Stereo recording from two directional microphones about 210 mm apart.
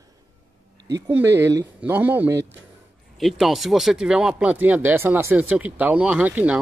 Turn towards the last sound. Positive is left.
turn(degrees=-5)  # may be behind; listen again after turning